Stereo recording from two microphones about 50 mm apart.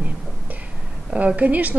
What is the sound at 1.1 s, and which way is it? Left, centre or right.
Speech, right.